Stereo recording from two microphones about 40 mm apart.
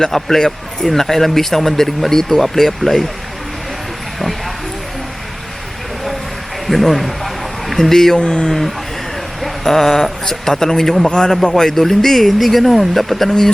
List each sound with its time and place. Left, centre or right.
0.0 s a man's voice: centre
6.7 s speech: centre
7.8 s a man's voice: centre
8.2 s a man's voice: left
9.4 s a man's voice: centre